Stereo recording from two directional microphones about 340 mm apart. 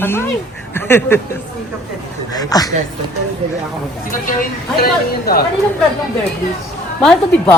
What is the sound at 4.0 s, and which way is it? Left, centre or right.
Speech, left.